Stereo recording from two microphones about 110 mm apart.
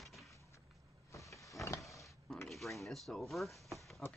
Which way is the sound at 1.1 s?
30° left (ahead or behind).